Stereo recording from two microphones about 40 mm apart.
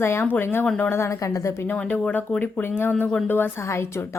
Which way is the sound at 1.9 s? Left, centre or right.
Left.